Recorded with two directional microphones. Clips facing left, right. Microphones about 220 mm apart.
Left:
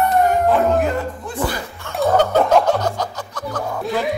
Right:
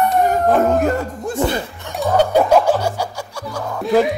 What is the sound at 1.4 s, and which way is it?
Snicker, 25° right (ahead or behind).